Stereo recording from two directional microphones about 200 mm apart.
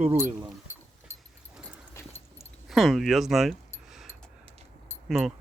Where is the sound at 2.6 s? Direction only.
Centre (ahead or behind).